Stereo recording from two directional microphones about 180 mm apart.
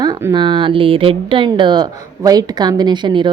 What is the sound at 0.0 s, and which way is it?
Speech, 20° right (ahead or behind).